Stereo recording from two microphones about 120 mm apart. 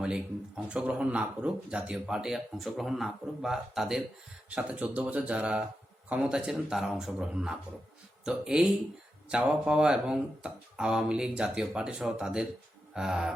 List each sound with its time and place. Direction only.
0.0 s speech: 5° right (ahead or behind)